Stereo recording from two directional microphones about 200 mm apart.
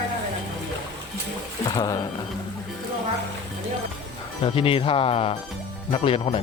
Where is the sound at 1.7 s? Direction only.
20° left (ahead or behind).